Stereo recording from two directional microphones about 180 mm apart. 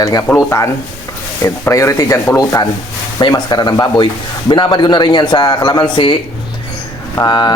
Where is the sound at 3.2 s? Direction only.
25° left (ahead or behind).